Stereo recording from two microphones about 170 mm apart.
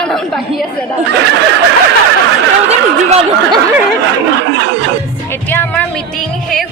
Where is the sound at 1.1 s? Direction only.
90° right.